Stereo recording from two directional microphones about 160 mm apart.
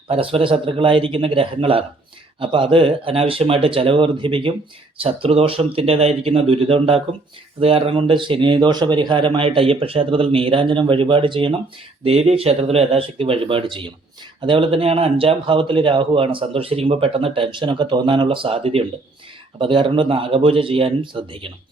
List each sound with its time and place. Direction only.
0.1 s speech: 35° right (ahead or behind)